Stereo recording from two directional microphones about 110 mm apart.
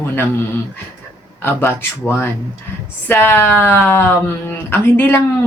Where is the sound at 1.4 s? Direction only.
20° left (ahead or behind).